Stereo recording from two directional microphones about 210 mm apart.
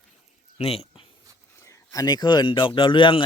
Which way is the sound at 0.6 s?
30° left (ahead or behind).